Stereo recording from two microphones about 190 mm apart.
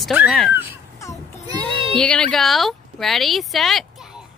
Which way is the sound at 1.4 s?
25° right (ahead or behind).